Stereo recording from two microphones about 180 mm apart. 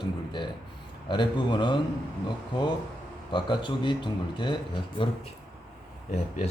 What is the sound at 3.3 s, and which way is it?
Speech, 25° left (ahead or behind).